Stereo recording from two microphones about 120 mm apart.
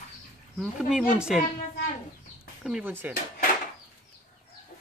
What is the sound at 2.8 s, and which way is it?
Speech, 15° right (ahead or behind).